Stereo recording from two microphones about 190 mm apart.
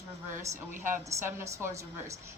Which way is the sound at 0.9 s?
15° right (ahead or behind).